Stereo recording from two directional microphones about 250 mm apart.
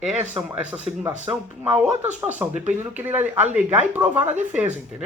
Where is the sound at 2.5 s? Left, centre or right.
Right.